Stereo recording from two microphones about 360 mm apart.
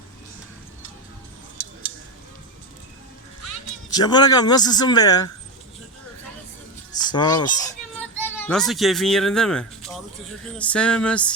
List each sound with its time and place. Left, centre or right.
3.8 s speech: centre
7.1 s speech: centre